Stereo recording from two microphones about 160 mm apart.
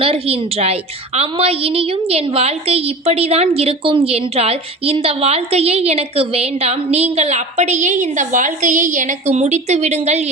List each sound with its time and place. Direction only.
0.0 s a woman's voice: 35° right (ahead or behind)